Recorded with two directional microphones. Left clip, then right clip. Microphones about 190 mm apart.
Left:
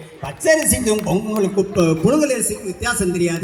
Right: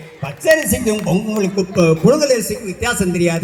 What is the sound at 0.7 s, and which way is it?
A man's voice, centre (ahead or behind).